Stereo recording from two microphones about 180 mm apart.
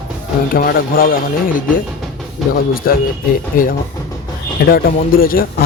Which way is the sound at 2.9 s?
55° left (ahead or behind).